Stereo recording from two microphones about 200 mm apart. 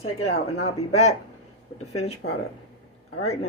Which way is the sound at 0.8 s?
35° left (ahead or behind).